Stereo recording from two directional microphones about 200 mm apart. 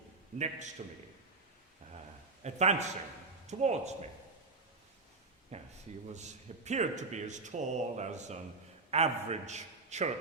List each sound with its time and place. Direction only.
0.3 s a man's voice: 35° right (ahead or behind)
1.8 s a sound: 35° right (ahead or behind)
2.4 s a man's voice: 35° right (ahead or behind)
5.5 s a man's voice: 35° right (ahead or behind)